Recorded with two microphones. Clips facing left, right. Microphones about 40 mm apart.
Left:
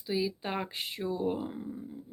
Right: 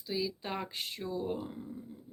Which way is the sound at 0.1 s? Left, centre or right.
Centre.